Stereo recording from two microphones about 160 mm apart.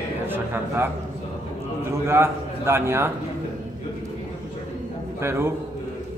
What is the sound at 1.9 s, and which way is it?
Speech, 15° right (ahead or behind).